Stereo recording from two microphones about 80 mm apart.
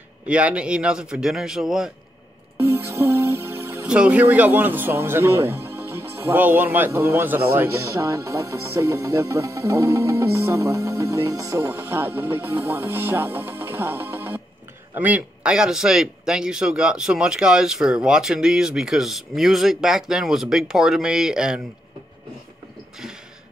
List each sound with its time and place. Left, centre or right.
0.3 s speech: centre
2.5 s music: right
3.8 s speech: centre
7.8 s speech: right; by 21.5 s centre